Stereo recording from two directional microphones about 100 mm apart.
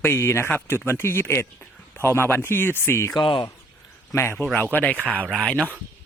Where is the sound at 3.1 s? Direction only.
55° left (ahead or behind).